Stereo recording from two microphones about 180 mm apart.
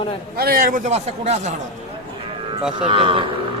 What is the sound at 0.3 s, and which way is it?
A man's voice, 55° right (ahead or behind).